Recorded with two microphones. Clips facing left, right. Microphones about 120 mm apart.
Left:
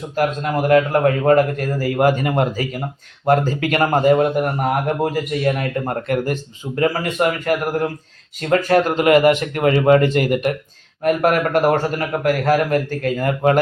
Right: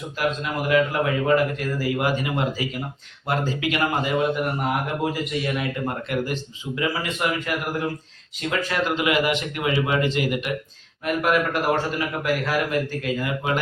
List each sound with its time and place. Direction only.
0.2 s a man's voice: 50° left (ahead or behind)